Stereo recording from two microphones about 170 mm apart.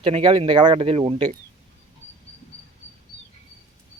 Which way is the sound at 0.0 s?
30° right (ahead or behind).